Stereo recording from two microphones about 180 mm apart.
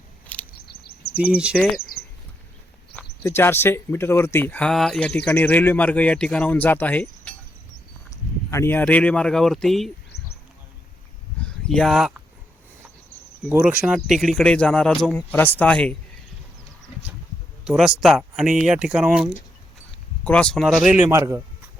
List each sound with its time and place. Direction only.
0.3 s a sound: 5° left (ahead or behind)
0.7 s a sound: 60° left (ahead or behind)
1.1 s speech: 5° right (ahead or behind)
2.9 s speech: 15° left (ahead or behind)
8.4 s speech: 15° left (ahead or behind)
11.3 s a sound: 5° left (ahead or behind)
13.5 s speech: 10° right (ahead or behind)
17.7 s speech: 5° right (ahead or behind)
21.1 s speech: 15° right (ahead or behind)